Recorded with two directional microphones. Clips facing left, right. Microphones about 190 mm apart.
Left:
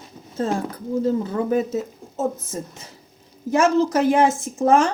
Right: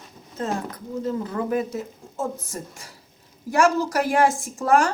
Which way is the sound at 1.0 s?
30° left (ahead or behind).